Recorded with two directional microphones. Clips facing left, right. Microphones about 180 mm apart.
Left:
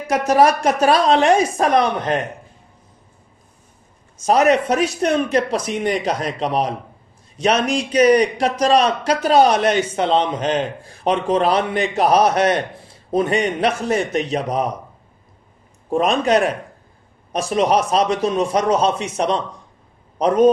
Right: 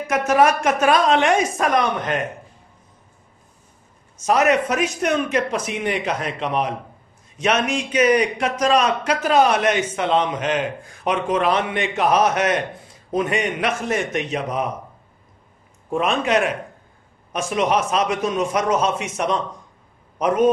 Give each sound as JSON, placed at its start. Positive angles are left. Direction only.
{"t": 0.0, "sound": "a man's voice", "side_deg": 35}
{"t": 4.2, "sound": "a man's voice", "side_deg": 35}
{"t": 15.9, "sound": "a man's voice", "side_deg": 35}